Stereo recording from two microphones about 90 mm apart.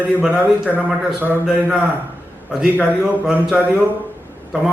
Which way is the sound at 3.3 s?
15° right (ahead or behind).